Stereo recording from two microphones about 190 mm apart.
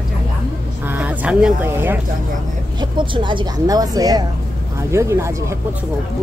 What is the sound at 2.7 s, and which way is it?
A woman's voice, 25° right (ahead or behind).